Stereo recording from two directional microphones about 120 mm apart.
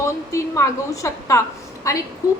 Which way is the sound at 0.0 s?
25° left (ahead or behind).